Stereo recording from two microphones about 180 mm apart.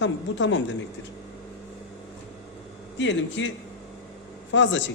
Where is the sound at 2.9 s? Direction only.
90° left.